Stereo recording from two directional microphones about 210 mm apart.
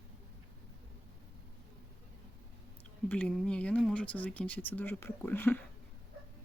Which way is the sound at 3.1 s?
5° left (ahead or behind).